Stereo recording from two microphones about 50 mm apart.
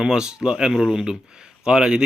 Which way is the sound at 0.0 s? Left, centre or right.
Centre.